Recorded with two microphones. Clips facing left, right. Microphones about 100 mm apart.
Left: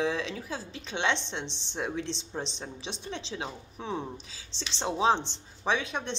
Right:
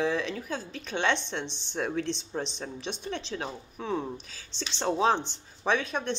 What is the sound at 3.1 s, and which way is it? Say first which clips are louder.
Speech: right 2 dB; 50° right (ahead or behind).